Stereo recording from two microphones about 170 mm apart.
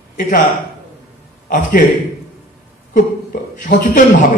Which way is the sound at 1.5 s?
50° left (ahead or behind).